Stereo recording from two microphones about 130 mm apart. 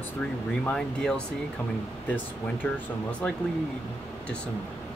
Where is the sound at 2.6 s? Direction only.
15° left (ahead or behind).